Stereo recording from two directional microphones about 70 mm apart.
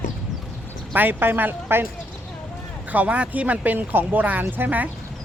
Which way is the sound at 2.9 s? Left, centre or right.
Right.